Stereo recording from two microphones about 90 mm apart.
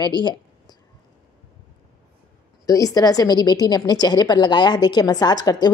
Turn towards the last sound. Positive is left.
turn(degrees=45)  # may be behind; listen again after turning